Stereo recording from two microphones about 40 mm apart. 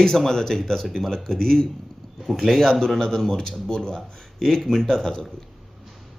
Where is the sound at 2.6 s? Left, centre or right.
Centre.